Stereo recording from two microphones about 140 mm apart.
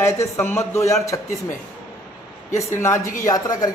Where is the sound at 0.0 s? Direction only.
20° left (ahead or behind).